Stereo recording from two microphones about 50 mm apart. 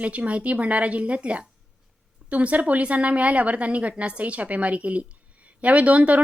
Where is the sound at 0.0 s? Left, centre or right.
Right.